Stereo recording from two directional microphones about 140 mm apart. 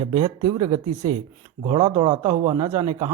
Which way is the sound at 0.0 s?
40° right (ahead or behind).